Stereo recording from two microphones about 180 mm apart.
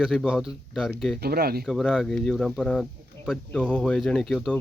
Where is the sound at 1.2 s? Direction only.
60° right (ahead or behind).